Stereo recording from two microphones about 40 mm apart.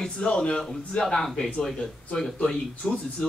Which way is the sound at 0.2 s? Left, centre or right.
Left.